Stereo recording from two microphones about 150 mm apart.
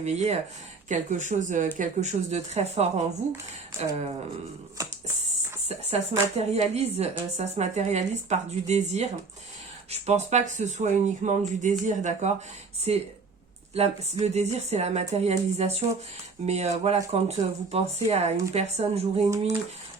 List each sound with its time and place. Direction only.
0.0 s speech: 50° right (ahead or behind)
5.6 s speech: 45° right (ahead or behind)
12.9 s speech: 45° right (ahead or behind)